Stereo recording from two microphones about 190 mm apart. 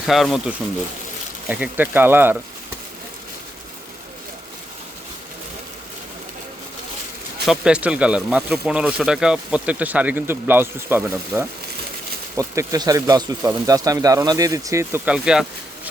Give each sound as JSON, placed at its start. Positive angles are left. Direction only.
{"t": 0.1, "sound": "speech", "side_deg": 0}
{"t": 7.4, "sound": "speech", "side_deg": -5}